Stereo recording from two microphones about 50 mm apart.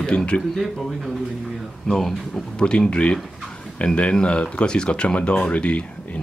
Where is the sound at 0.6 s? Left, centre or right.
Centre.